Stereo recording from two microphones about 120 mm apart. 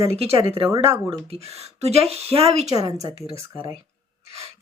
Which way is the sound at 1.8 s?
60° right (ahead or behind).